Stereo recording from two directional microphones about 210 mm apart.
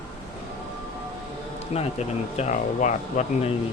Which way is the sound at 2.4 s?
35° left (ahead or behind).